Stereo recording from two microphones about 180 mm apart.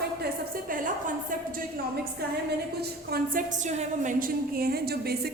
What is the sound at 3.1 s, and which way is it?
A woman's voice, 45° right (ahead or behind).